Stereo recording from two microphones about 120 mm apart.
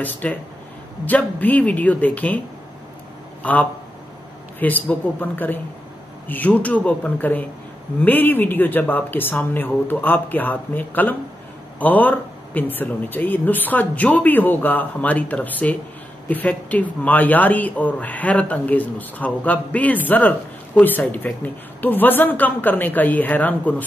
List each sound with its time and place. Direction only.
0.0 s speech: 15° left (ahead or behind)
4.6 s speech: 15° left (ahead or behind)